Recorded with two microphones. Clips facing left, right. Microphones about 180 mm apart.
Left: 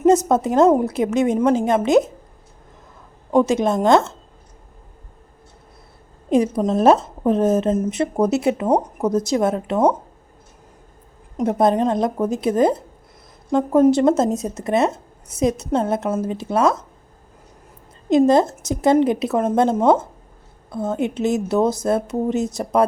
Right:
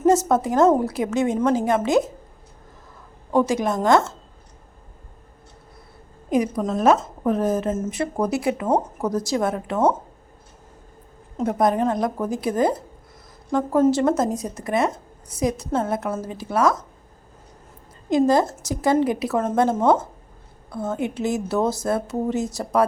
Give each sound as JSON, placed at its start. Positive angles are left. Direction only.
{"t": 0.0, "sound": "speech", "side_deg": 20}
{"t": 3.3, "sound": "speech", "side_deg": 20}
{"t": 6.3, "sound": "speech", "side_deg": 25}
{"t": 11.3, "sound": "speech", "side_deg": 25}
{"t": 18.3, "sound": "speech", "side_deg": 20}